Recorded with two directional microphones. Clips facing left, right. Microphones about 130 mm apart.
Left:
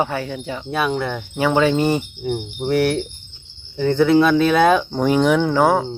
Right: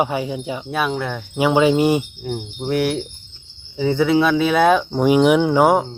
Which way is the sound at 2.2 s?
Centre (ahead or behind).